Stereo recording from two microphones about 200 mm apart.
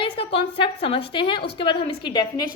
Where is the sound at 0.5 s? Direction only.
25° left (ahead or behind).